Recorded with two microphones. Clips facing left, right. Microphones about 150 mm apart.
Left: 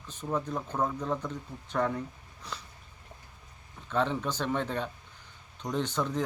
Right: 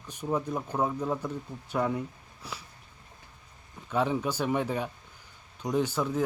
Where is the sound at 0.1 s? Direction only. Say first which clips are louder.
Right 2 dB; 10° right (ahead or behind).